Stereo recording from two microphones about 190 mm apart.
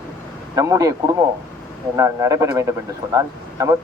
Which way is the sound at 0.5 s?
15° right (ahead or behind).